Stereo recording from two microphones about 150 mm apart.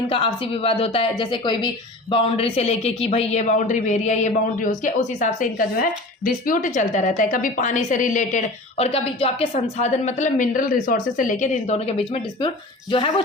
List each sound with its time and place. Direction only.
0.1 s speech: 40° left (ahead or behind)